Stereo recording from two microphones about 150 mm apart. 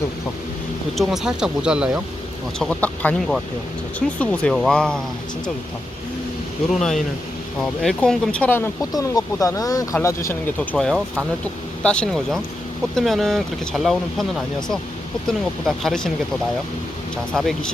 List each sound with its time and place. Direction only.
0.9 s speech: 5° right (ahead or behind)
2.6 s speech: 10° left (ahead or behind)
6.7 s speech: centre (ahead or behind); by 9.8 s 25° left (ahead or behind)
10.2 s speech: 10° left (ahead or behind)
15.3 s speech: centre (ahead or behind)
17.3 s speech: centre (ahead or behind)